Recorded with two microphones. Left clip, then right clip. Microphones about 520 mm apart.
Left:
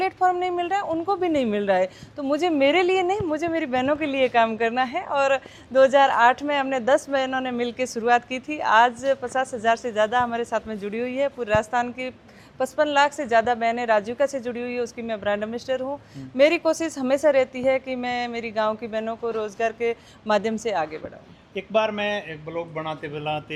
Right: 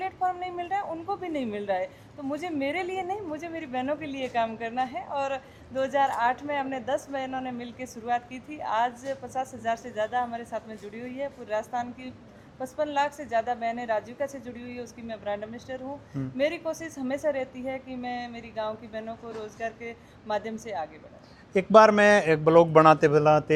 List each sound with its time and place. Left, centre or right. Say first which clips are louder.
0.0 s speech: left 8 dB; left
21.7 s a man's voice: right 6 dB; right